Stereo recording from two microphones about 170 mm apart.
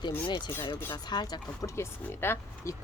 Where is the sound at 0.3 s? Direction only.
25° left (ahead or behind).